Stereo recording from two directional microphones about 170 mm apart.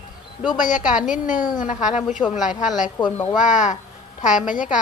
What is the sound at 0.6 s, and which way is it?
A woman's voice, 50° left (ahead or behind).